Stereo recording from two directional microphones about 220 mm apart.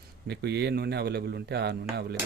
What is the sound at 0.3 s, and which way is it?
A man's voice, 50° right (ahead or behind).